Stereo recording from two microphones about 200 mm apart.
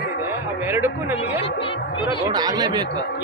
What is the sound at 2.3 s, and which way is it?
Speech, 20° right (ahead or behind).